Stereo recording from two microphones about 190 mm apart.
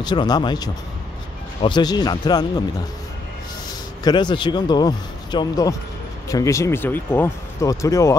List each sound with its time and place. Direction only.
0.0 s speech: 25° left (ahead or behind)
4.0 s speech: 25° left (ahead or behind)